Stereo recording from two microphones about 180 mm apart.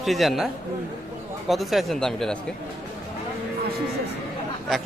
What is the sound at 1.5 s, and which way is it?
Speech, centre (ahead or behind).